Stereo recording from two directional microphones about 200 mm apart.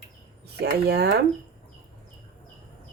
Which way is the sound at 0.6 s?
55° right (ahead or behind).